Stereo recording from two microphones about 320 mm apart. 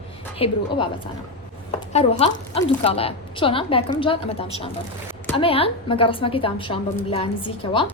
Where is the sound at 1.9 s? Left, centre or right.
Centre.